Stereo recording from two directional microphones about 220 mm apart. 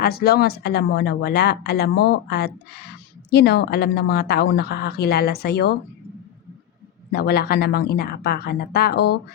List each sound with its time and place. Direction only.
0.0 s speech: 45° left (ahead or behind)
7.1 s speech: 45° left (ahead or behind)